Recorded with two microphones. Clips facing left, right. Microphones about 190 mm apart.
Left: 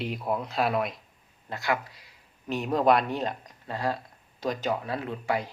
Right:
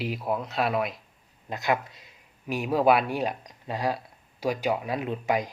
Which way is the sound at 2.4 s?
10° right (ahead or behind).